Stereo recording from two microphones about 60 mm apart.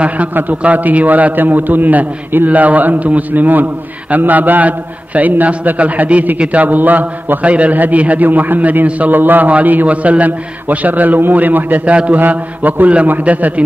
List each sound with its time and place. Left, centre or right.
0.0 s a man's voice: right